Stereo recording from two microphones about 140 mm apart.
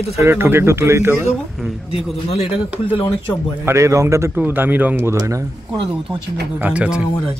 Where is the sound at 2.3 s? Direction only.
50° left (ahead or behind).